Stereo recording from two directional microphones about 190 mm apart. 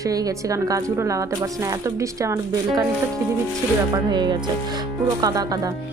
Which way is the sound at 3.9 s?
25° right (ahead or behind).